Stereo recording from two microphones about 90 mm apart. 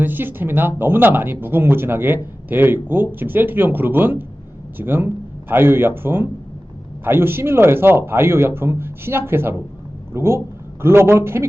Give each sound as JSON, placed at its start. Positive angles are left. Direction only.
{"t": 0.0, "sound": "a man's voice", "side_deg": -20}